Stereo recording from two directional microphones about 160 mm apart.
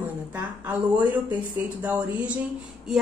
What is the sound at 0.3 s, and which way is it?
Speech, 10° right (ahead or behind).